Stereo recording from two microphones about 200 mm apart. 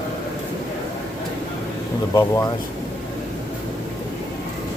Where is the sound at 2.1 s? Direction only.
20° left (ahead or behind).